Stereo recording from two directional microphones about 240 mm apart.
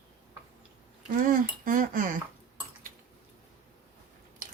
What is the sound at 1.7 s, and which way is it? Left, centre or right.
Speech, right.